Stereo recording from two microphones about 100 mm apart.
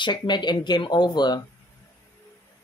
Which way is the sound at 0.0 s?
50° left (ahead or behind).